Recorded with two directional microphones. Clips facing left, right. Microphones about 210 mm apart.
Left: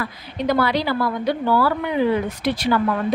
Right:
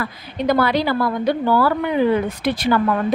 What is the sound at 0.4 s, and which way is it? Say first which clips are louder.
A woman's voice: right 2 dB; 50° right (ahead or behind).